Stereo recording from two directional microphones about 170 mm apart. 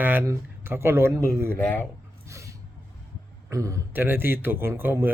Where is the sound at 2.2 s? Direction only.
15° right (ahead or behind).